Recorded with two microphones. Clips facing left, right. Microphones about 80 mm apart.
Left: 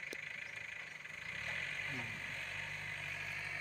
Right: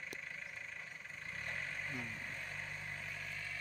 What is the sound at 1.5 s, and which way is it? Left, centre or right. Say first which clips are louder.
Vehicle: even; centre.